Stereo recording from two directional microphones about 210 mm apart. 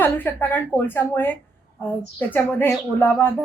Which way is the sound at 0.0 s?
10° left (ahead or behind).